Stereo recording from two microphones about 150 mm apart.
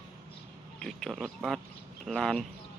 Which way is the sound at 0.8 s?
5° left (ahead or behind).